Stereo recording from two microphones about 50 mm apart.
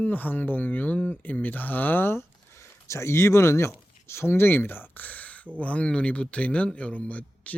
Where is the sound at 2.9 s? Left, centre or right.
Left.